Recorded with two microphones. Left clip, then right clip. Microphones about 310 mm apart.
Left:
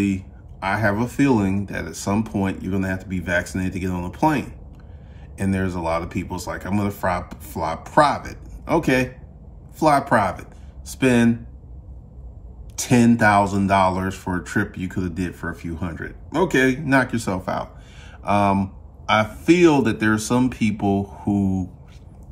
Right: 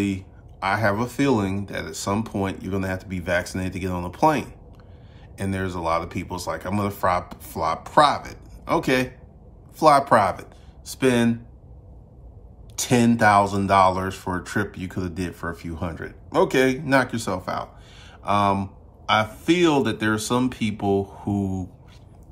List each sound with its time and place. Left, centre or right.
0.0 s speech: centre
12.7 s speech: centre